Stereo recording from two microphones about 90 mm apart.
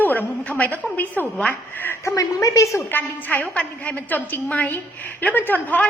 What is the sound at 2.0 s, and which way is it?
Speech, 40° left (ahead or behind).